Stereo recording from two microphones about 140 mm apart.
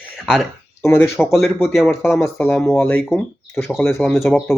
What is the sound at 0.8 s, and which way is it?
Speech, 15° left (ahead or behind).